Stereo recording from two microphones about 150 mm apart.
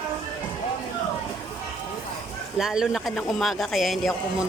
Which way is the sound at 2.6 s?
Centre (ahead or behind).